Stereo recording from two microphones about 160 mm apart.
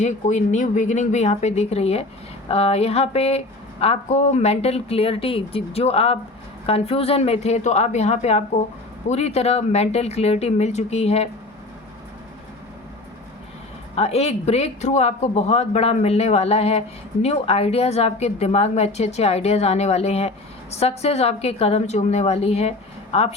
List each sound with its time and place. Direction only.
0.0 s a woman's voice: 50° left (ahead or behind)
13.9 s a woman's voice: 40° left (ahead or behind)